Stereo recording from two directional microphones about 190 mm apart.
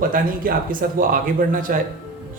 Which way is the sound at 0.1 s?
45° right (ahead or behind).